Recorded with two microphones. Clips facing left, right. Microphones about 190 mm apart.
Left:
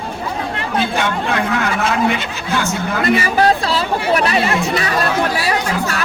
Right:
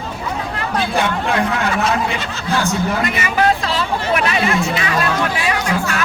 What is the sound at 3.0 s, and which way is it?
Speech, 35° left (ahead or behind).